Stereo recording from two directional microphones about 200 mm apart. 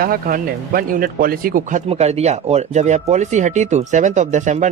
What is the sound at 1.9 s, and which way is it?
Speech, 30° right (ahead or behind).